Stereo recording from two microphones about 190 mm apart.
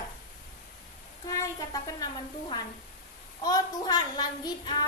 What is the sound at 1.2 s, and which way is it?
A child's voice, 20° left (ahead or behind).